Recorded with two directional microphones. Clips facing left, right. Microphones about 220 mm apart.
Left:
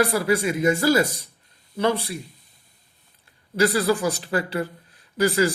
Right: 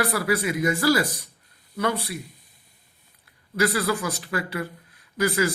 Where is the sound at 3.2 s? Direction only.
30° left (ahead or behind).